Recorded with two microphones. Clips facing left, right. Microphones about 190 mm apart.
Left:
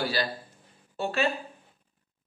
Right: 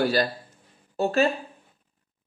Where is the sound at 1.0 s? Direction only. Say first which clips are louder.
Right 6 dB; 40° right (ahead or behind).